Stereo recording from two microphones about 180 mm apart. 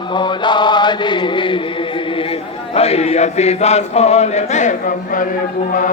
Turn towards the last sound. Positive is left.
turn(degrees=50)  # may be behind; listen again after turning